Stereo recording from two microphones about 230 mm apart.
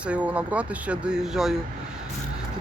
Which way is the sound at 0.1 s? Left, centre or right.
Centre.